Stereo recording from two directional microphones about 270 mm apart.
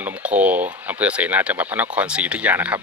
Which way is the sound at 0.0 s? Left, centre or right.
Centre.